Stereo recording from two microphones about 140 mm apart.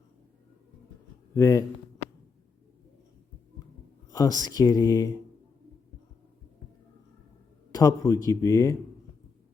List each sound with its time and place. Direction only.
1.3 s a man's voice: 25° left (ahead or behind)
4.1 s a man's voice: 25° left (ahead or behind)
7.7 s a man's voice: 25° left (ahead or behind)